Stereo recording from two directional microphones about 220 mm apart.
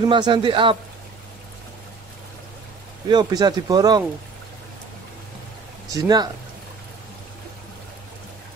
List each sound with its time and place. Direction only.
0.0 s speech: 20° right (ahead or behind)
3.1 s speech: 20° right (ahead or behind)
5.9 s speech: 15° right (ahead or behind)